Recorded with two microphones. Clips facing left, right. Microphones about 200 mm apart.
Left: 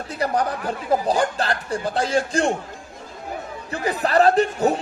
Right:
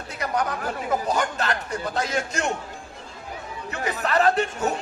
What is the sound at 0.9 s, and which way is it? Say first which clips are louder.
Speech: left 5 dB; 30° left (ahead or behind).